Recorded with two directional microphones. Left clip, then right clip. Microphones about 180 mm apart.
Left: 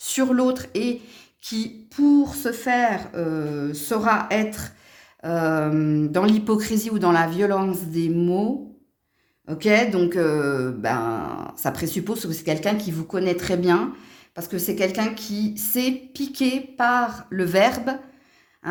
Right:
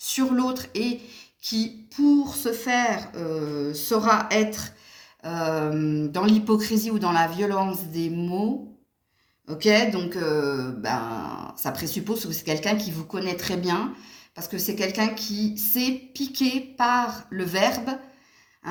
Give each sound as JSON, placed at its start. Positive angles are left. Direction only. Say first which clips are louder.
{"t": 0.0, "sound": "speech", "louder": "left 4 dB", "side_deg": 45}
{"t": 9.5, "sound": "speech", "louder": "left 1 dB", "side_deg": 45}